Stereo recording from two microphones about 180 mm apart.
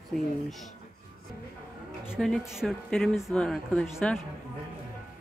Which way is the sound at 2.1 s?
Centre (ahead or behind).